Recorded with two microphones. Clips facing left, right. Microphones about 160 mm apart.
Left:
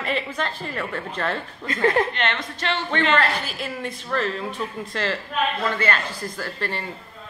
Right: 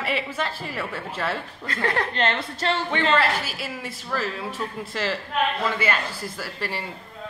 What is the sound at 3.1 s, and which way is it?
A woman's voice, 5° right (ahead or behind).